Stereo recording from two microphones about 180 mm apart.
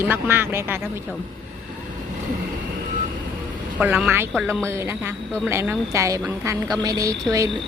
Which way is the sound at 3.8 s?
10° right (ahead or behind).